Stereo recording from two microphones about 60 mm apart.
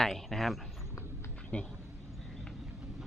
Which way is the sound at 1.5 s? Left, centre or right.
Centre.